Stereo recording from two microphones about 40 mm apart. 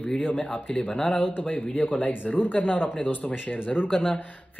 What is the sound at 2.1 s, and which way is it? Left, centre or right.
Speech, left.